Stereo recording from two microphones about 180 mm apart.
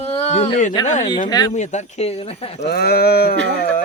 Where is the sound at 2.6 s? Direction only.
60° left (ahead or behind).